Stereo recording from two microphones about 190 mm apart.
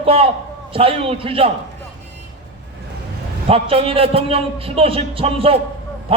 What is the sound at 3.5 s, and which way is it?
A man's voice, 30° right (ahead or behind).